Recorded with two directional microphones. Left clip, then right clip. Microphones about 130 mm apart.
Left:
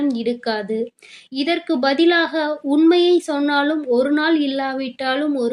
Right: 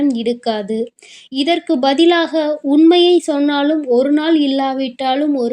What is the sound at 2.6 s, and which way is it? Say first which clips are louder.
Speech: right 4 dB; 25° right (ahead or behind).